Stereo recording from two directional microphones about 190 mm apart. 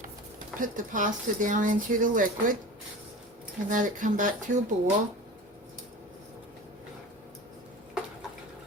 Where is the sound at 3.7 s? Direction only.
45° right (ahead or behind).